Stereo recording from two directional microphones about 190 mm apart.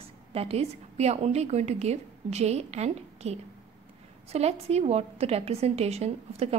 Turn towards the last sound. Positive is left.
turn(degrees=-35)  # may be behind; listen again after turning